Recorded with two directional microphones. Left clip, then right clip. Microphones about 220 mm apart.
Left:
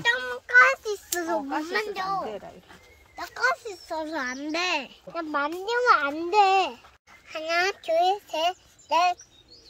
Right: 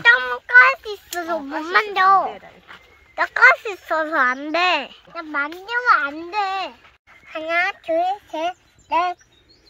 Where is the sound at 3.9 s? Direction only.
Centre (ahead or behind).